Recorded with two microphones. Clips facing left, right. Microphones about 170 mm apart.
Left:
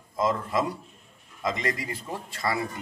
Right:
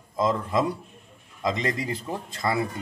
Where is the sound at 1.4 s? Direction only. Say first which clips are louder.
Right 3 dB; 25° right (ahead or behind).